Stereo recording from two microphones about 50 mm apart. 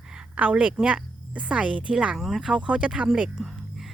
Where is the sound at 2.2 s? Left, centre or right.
Centre.